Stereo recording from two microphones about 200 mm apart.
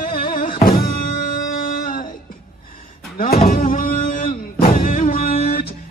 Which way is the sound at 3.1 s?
45° left (ahead or behind).